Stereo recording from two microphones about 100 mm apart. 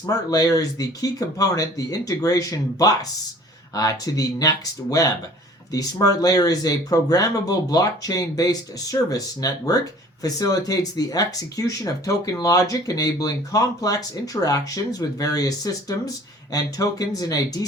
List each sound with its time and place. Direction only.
0.0 s speech: 40° left (ahead or behind)